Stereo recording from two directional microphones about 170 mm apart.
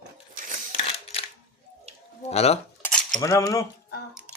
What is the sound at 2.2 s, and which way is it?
Speech, 40° left (ahead or behind).